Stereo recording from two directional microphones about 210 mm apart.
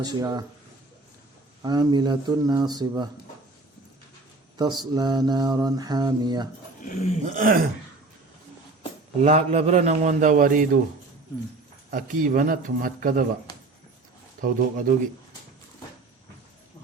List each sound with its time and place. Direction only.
0.0 s mantra: 20° right (ahead or behind)
1.6 s mantra: 20° right (ahead or behind)
4.5 s mantra: 20° right (ahead or behind)
7.2 s a man's voice: 40° right (ahead or behind)
9.2 s a man's voice: 30° right (ahead or behind)
11.9 s a man's voice: 40° right (ahead or behind)
14.4 s a man's voice: 40° right (ahead or behind)